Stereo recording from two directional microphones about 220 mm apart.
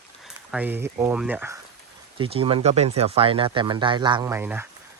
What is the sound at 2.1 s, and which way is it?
Speech, 25° right (ahead or behind).